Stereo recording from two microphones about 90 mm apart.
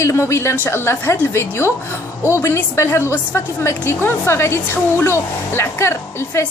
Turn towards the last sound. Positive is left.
turn(degrees=30)  # may be behind; listen again after turning